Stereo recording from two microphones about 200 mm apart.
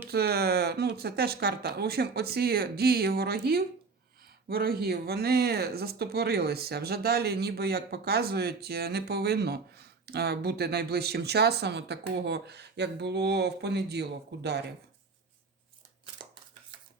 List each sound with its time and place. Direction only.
0.1 s speech: 50° right (ahead or behind)